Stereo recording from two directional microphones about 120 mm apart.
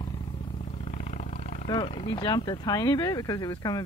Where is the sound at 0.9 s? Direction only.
80° left.